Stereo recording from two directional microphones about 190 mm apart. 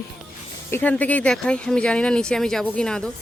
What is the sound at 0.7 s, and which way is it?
Speech, 10° left (ahead or behind).